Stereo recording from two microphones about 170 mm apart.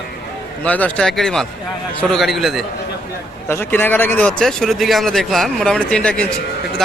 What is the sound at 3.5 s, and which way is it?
Speech, 15° left (ahead or behind).